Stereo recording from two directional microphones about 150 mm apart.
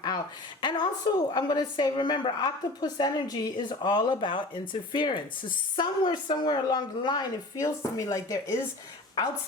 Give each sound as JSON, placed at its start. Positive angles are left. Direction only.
{"t": 0.6, "sound": "a woman's voice", "side_deg": 30}